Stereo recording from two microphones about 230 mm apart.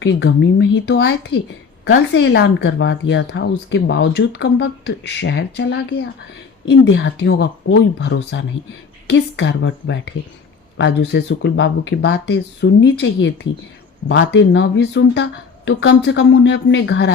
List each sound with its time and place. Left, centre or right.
0.0 s a woman's voice: left